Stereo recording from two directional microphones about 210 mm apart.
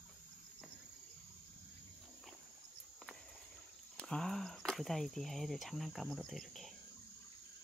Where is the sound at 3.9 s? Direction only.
5° left (ahead or behind).